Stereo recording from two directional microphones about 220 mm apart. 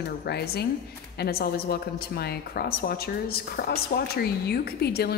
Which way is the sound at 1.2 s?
45° left (ahead or behind).